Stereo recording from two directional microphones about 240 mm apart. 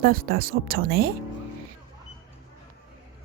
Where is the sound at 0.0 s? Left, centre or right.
Right.